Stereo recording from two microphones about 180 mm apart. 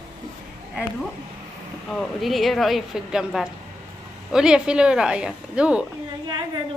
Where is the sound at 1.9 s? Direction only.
Centre (ahead or behind).